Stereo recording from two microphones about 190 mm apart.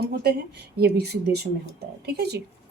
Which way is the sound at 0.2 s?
55° right (ahead or behind).